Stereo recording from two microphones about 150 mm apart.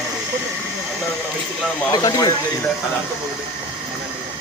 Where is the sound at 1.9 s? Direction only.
25° left (ahead or behind).